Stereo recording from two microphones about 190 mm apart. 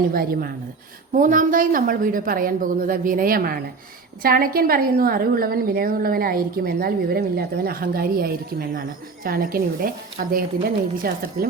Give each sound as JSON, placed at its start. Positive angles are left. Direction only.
{"t": 0.1, "sound": "a woman's voice", "side_deg": -50}